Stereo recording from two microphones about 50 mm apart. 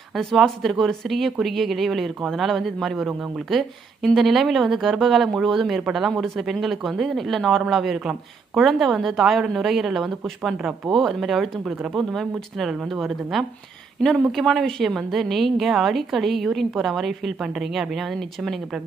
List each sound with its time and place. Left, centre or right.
0.2 s speech: centre